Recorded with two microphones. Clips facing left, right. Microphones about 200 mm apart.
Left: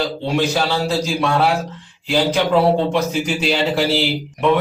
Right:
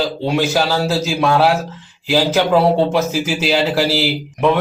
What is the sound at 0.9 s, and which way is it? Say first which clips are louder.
Speech: right 2 dB; 5° right (ahead or behind).